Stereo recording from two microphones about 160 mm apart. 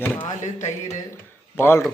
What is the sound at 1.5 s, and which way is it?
Speech, 15° left (ahead or behind).